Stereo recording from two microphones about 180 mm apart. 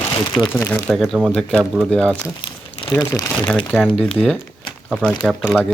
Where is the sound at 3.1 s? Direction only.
20° left (ahead or behind).